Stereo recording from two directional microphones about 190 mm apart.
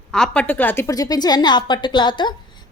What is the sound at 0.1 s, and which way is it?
A woman's voice, 5° left (ahead or behind).